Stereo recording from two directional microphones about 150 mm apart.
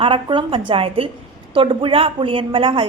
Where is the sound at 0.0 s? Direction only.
35° right (ahead or behind).